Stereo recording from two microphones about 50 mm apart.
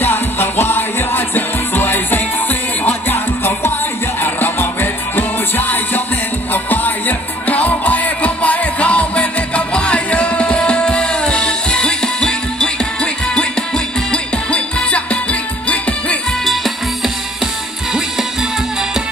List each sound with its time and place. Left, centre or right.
0.0 s music: left
16.4 s music: centre